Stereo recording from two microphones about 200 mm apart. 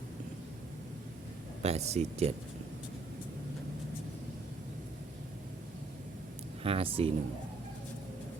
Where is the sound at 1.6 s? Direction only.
30° right (ahead or behind).